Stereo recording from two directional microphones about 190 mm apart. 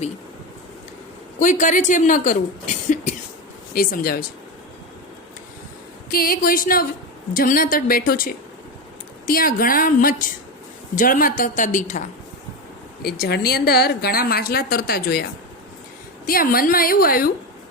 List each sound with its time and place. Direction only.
1.4 s a woman's voice: 40° left (ahead or behind)
2.9 s a sound: 40° left (ahead or behind)
3.8 s a woman's voice: 50° left (ahead or behind)
6.1 s a woman's voice: 50° left (ahead or behind)
13.0 s a woman's voice: 55° left (ahead or behind)